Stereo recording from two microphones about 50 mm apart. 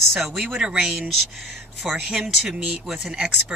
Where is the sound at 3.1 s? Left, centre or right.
Right.